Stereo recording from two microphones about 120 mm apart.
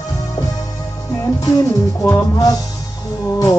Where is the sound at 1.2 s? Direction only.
30° left (ahead or behind).